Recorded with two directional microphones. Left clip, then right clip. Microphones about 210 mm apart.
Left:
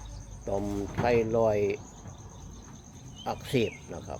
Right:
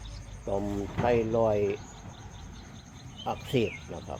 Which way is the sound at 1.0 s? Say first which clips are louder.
Left 1 dB; 10° right (ahead or behind).